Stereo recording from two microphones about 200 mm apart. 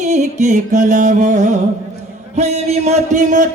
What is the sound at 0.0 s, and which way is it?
Music, 35° right (ahead or behind).